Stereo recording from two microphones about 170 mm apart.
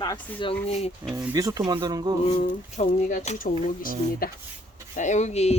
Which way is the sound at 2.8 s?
45° left (ahead or behind).